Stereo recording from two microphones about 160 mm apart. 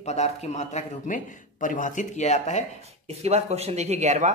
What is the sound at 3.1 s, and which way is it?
Speech, 40° right (ahead or behind).